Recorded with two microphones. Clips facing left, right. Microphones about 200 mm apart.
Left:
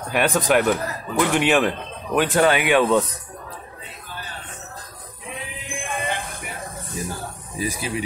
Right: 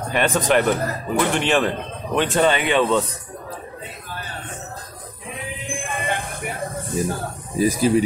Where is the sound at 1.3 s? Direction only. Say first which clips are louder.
Left 3 dB; 10° left (ahead or behind).